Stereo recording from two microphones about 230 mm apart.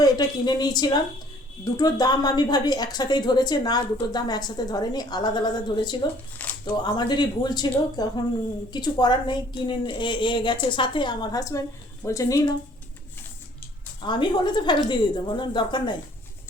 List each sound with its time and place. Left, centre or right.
0.0 s a woman's voice: centre
14.0 s a woman's voice: centre